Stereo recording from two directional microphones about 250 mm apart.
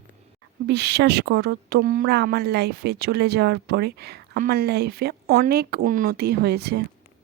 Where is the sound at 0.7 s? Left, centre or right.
Right.